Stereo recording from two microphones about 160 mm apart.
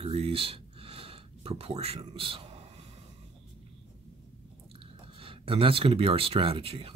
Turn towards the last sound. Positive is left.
turn(degrees=-35)  # may be behind; listen again after turning